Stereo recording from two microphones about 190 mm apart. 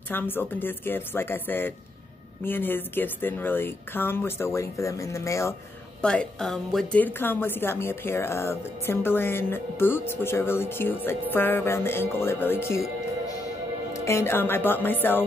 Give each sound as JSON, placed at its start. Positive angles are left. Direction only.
{"t": 0.1, "sound": "a woman's voice", "side_deg": 10}
{"t": 6.0, "sound": "a woman's voice", "side_deg": 5}
{"t": 13.9, "sound": "a woman's voice", "side_deg": 15}